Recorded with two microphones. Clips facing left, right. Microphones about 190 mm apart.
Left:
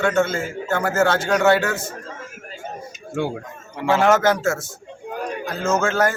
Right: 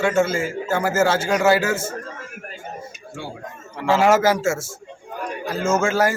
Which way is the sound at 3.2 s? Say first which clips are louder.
Left 10 dB; 60° left (ahead or behind).